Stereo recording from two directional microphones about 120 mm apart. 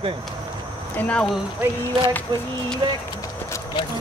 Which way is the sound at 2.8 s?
40° right (ahead or behind).